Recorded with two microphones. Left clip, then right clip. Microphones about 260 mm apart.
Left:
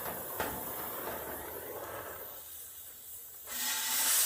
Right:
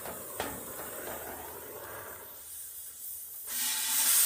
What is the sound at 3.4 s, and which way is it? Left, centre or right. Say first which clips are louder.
Hiss: right 1 dB; centre.